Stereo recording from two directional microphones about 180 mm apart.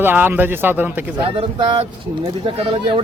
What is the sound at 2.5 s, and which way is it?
Speech, 30° right (ahead or behind).